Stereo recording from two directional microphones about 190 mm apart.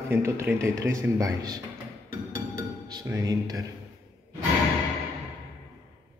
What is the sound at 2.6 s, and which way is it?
Chink, 15° right (ahead or behind).